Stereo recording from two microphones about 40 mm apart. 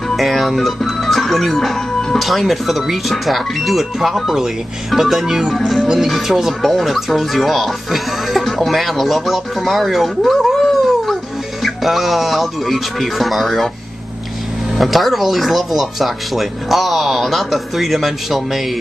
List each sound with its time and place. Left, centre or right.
0.1 s speech: centre
5.8 s speech: centre
6.0 s speech: centre
14.8 s speech: centre